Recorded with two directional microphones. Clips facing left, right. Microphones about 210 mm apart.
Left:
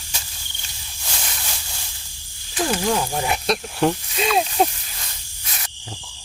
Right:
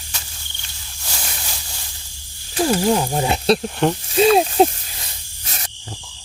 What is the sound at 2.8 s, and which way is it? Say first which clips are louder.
Speech: right 4 dB; 25° right (ahead or behind).